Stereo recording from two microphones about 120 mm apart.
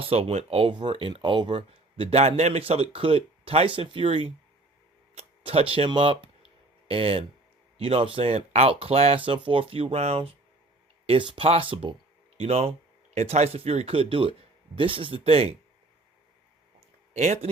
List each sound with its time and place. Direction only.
0.0 s speech: 55° right (ahead or behind)
17.2 s speech: 65° right (ahead or behind)